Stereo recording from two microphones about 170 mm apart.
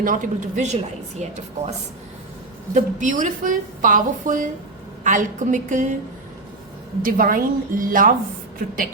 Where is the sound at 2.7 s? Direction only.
50° right (ahead or behind).